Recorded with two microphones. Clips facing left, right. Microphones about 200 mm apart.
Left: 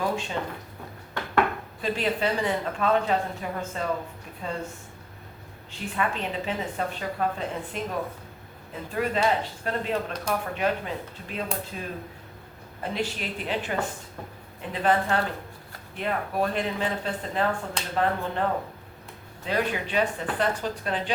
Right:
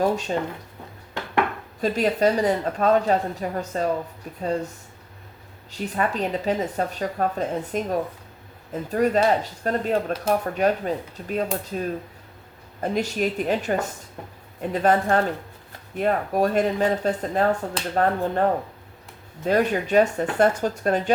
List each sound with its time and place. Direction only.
0.0 s speech: 45° right (ahead or behind)
1.8 s speech: 40° right (ahead or behind)
5.7 s speech: 40° right (ahead or behind)
12.8 s speech: 45° right (ahead or behind)
19.5 s speech: 45° right (ahead or behind)